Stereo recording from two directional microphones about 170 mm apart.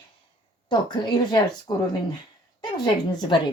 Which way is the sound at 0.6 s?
25° left (ahead or behind).